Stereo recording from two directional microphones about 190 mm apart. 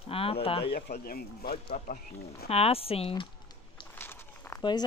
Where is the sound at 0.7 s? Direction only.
55° left (ahead or behind).